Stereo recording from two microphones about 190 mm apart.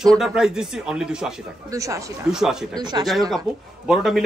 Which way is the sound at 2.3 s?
Centre (ahead or behind).